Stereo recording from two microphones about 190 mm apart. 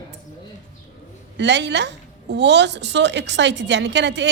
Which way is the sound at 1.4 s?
65° right (ahead or behind).